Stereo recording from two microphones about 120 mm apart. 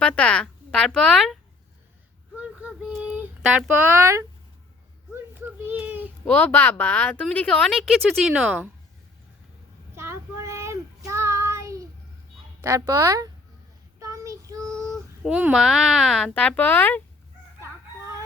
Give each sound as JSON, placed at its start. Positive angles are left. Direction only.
{"t": 0.0, "sound": "speech", "side_deg": 10}
{"t": 2.3, "sound": "a sound", "side_deg": -10}
{"t": 3.7, "sound": "speech", "side_deg": -15}
{"t": 5.1, "sound": "a sound", "side_deg": -20}
{"t": 6.2, "sound": "a woman's voice", "side_deg": 10}
{"t": 8.3, "sound": "speech", "side_deg": -10}
{"t": 9.9, "sound": "child singing", "side_deg": -20}
{"t": 12.6, "sound": "speech", "side_deg": -25}
{"t": 14.0, "sound": "child singing", "side_deg": -25}
{"t": 14.8, "sound": "a child's voice", "side_deg": -5}